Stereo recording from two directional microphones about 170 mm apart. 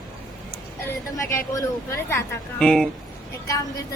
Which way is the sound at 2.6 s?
5° left (ahead or behind).